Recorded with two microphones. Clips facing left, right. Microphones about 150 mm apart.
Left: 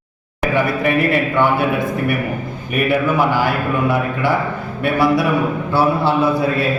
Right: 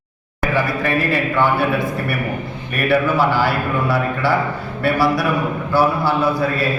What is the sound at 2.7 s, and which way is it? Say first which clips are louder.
Speech: even; 15° left (ahead or behind).